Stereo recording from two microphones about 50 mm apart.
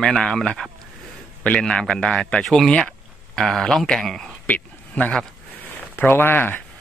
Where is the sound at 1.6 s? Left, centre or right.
Centre.